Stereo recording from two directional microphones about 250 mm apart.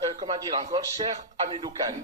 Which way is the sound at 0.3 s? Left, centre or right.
Centre.